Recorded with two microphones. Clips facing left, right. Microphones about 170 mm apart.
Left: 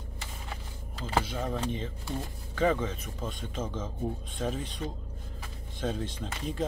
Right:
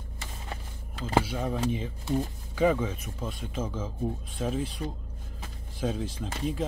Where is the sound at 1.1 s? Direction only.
10° right (ahead or behind).